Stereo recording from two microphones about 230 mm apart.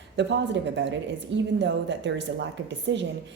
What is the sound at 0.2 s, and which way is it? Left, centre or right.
A woman's voice, right.